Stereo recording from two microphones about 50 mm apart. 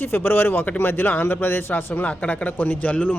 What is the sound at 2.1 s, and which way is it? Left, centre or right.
Speech, left.